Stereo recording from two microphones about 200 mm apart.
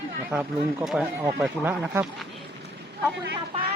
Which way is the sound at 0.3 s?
5° right (ahead or behind).